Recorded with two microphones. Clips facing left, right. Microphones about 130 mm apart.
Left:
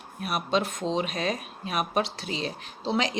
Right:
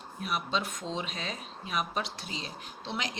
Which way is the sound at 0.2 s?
70° left (ahead or behind).